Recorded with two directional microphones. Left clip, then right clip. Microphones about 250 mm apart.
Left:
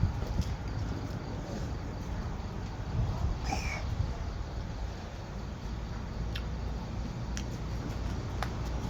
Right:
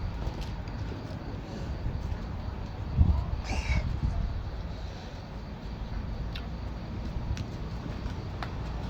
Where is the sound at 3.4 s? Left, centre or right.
Centre.